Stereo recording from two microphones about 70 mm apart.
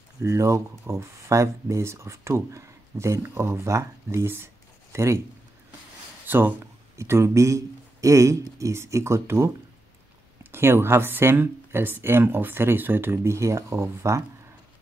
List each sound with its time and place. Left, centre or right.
0.2 s speech: right
6.2 s speech: right
7.0 s speech: right